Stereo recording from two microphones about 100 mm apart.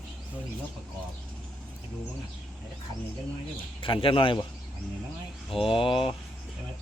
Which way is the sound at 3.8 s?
60° left (ahead or behind).